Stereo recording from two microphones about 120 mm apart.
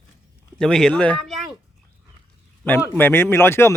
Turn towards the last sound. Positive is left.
turn(degrees=20)  # may be behind; listen again after turning